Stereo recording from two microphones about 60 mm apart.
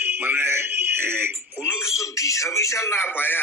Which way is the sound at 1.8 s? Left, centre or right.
Left.